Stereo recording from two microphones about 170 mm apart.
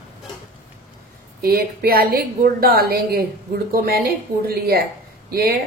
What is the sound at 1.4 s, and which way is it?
A woman's voice, 65° right (ahead or behind).